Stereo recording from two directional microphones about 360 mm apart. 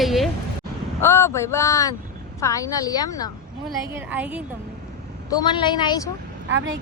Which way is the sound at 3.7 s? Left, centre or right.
Centre.